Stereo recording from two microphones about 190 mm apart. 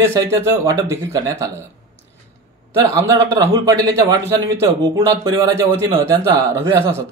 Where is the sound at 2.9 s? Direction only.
15° right (ahead or behind).